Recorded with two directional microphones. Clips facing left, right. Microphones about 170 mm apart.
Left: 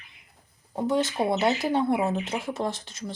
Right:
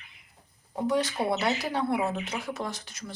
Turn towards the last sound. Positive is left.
turn(degrees=25)  # may be behind; listen again after turning